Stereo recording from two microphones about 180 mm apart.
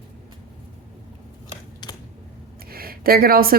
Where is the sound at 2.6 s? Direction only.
55° right (ahead or behind).